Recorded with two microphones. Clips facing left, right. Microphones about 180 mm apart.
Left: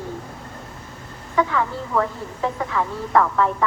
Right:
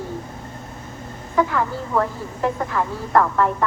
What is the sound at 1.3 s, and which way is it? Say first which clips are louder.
A woman's voice: right 1 dB; centre (ahead or behind).